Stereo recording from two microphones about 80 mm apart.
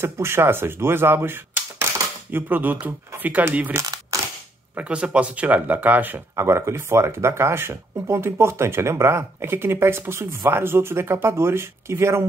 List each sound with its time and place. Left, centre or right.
0.0 s speech: right
3.8 s a sound: right
4.7 s speech: centre
6.3 s speech: right